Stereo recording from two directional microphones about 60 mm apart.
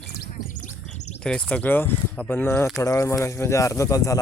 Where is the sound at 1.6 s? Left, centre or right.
Left.